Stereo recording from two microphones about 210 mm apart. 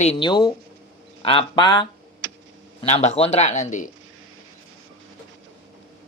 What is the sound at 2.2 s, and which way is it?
Computer keyboard, 55° right (ahead or behind).